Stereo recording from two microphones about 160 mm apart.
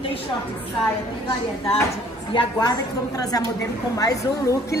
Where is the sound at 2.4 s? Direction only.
25° left (ahead or behind).